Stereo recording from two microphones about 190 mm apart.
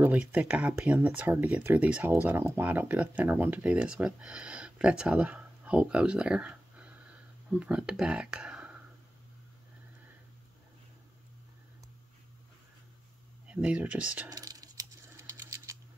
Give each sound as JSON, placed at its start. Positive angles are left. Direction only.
{"t": 0.0, "sound": "speech", "side_deg": -10}
{"t": 13.5, "sound": "speech", "side_deg": -5}
{"t": 14.3, "sound": "a sound", "side_deg": -20}